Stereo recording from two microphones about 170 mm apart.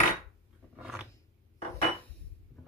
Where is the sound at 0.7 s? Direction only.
5° right (ahead or behind).